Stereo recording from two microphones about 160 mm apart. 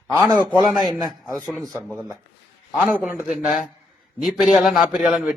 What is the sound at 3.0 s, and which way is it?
A man's voice, 10° right (ahead or behind).